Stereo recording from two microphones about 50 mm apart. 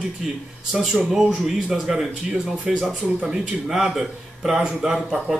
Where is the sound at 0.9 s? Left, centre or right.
Centre.